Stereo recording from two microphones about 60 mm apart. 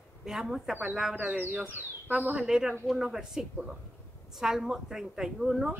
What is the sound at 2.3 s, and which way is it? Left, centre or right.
A woman's voice, centre.